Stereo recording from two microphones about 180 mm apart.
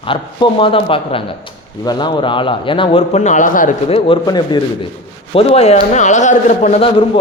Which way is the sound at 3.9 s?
25° left (ahead or behind).